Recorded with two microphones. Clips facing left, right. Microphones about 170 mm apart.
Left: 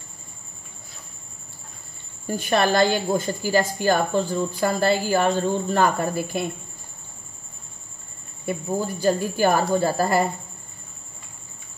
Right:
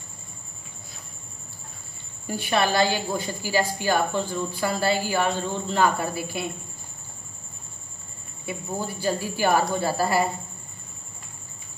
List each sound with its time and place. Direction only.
2.2 s a woman's voice: 45° left (ahead or behind)
8.5 s a woman's voice: 45° left (ahead or behind)